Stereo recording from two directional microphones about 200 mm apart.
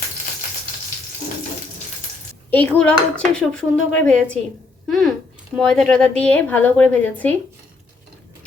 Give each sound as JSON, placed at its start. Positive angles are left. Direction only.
{"t": 2.5, "sound": "speech", "side_deg": 5}